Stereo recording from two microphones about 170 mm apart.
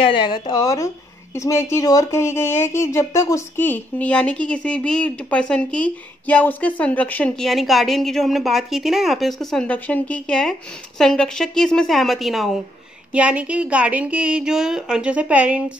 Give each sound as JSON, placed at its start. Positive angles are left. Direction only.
{"t": 0.0, "sound": "a woman's voice", "side_deg": 30}